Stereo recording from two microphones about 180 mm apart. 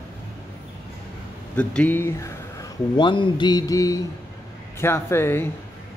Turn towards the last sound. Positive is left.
turn(degrees=15)  # may be behind; listen again after turning